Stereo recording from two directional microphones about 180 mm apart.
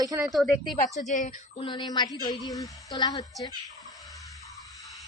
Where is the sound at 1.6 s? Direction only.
25° left (ahead or behind).